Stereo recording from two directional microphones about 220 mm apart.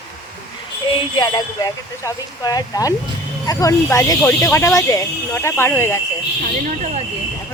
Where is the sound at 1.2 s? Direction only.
20° left (ahead or behind).